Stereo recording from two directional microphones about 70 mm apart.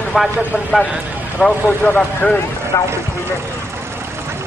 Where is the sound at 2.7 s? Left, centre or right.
Left.